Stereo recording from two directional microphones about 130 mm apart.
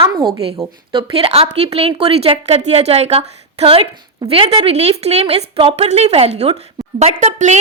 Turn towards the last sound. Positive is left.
turn(degrees=-60)  # may be behind; listen again after turning